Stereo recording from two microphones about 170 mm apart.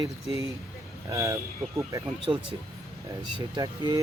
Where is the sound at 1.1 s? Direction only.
15° right (ahead or behind).